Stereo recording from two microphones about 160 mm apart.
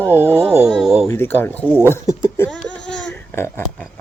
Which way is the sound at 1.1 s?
15° left (ahead or behind).